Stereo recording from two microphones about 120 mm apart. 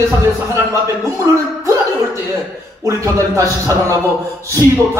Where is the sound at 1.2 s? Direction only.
25° right (ahead or behind).